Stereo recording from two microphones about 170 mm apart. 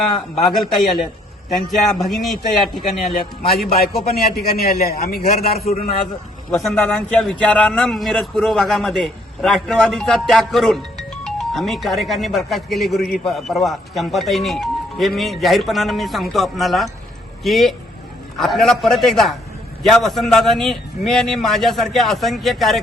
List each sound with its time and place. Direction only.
0.8 s speech: centre (ahead or behind)
3.8 s a man's voice: 60° left (ahead or behind)
6.5 s speech: centre (ahead or behind)